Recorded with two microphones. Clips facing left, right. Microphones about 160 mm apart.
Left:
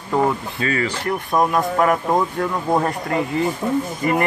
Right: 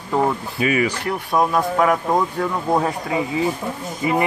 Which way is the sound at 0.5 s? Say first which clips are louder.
Right 3 dB; 15° right (ahead or behind).